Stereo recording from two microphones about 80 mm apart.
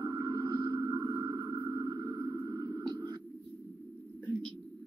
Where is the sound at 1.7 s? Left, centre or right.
Right.